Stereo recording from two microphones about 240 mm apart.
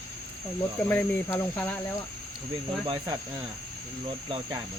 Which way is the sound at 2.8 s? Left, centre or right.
Centre.